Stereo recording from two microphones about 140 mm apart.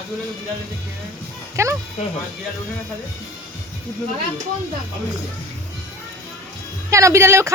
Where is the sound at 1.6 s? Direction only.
20° right (ahead or behind).